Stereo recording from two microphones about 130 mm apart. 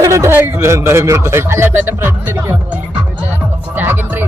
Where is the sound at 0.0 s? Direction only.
20° right (ahead or behind).